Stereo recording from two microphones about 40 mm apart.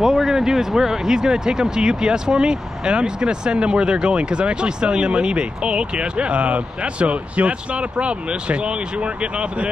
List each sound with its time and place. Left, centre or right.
0.0 s speech: centre; by 9.7 s right